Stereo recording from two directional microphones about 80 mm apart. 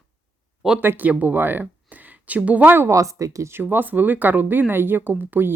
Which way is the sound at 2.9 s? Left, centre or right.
Right.